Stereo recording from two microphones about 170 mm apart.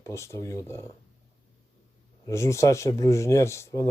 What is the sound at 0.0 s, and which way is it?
Speech, 15° left (ahead or behind).